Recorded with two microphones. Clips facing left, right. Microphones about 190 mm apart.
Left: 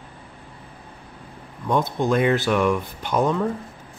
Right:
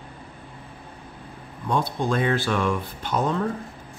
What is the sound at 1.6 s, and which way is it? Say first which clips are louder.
Speech: left 3 dB; 20° left (ahead or behind).